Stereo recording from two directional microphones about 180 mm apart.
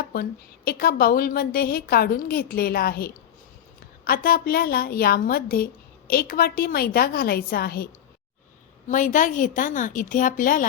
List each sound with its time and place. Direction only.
0.0 s a woman's voice: 55° left (ahead or behind)
8.9 s a woman's voice: 45° left (ahead or behind)